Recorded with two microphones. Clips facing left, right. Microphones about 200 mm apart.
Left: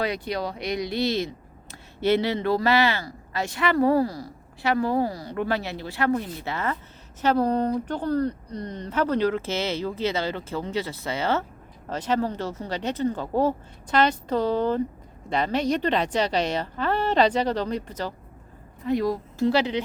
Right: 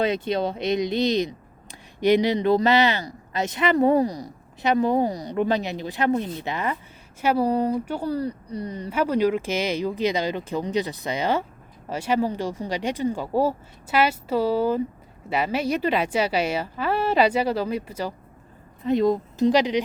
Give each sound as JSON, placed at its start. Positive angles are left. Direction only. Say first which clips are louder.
{"t": 0.0, "sound": "speech", "louder": "right 4 dB", "side_deg": -25}
{"t": 18.9, "sound": "speech", "louder": "right 4 dB", "side_deg": -20}